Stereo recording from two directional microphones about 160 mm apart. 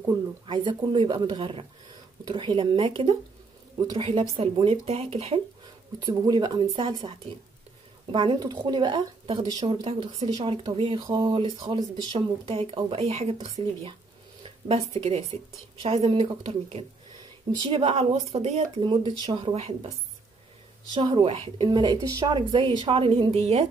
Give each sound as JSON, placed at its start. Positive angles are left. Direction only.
{"t": 0.0, "sound": "speech", "side_deg": -30}
{"t": 5.9, "sound": "speech", "side_deg": -25}
{"t": 20.9, "sound": "speech", "side_deg": -30}